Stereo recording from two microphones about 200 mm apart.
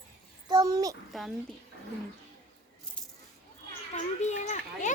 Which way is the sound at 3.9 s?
35° left (ahead or behind).